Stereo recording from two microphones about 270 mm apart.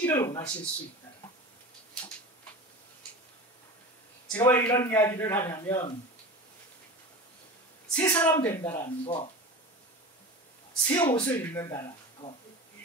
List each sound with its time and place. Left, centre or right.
0.0 s a sound: centre
4.3 s a man's voice: centre
7.9 s a man's voice: centre
9.0 s speech: centre
10.7 s speech: centre